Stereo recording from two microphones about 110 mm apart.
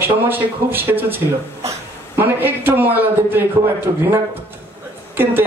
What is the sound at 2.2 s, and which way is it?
A man's voice, 20° right (ahead or behind).